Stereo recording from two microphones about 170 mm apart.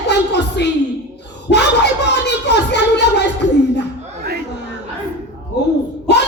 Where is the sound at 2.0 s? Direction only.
85° left.